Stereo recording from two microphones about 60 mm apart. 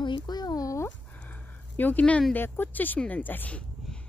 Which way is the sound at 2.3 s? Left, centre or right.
Left.